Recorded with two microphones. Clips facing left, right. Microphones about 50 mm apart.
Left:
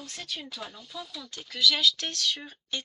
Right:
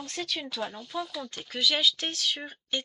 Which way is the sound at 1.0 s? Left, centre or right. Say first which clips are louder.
Right 5 dB; right.